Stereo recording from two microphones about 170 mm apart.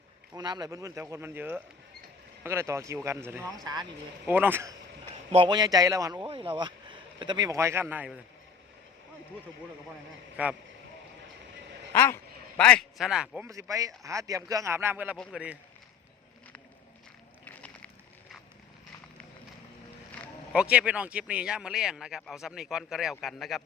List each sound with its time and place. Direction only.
0.3 s speech: 25° right (ahead or behind)
4.3 s speech: 10° right (ahead or behind)
5.3 s speech: 30° right (ahead or behind)
6.2 s speech: 30° right (ahead or behind); by 8.2 s 10° right (ahead or behind)
10.4 s speech: 10° right (ahead or behind)
11.9 s a man's voice: 15° left (ahead or behind); by 13.5 s 5° right (ahead or behind)
13.5 s speech: 20° right (ahead or behind)
17.4 s a sound: 10° left (ahead or behind)
20.5 s speech: 5° right (ahead or behind)